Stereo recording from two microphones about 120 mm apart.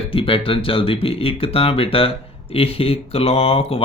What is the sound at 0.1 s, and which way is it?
Speech, 50° left (ahead or behind).